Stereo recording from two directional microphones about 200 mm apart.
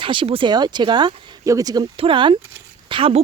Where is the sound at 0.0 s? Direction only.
25° right (ahead or behind).